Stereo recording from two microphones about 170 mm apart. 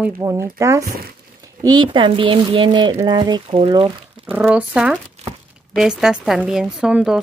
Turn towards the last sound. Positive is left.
turn(degrees=-5)  # may be behind; listen again after turning